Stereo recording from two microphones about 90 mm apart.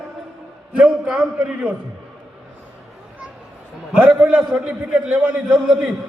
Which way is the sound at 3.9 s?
15° right (ahead or behind).